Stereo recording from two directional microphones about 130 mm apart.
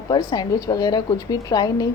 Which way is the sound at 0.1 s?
30° left (ahead or behind).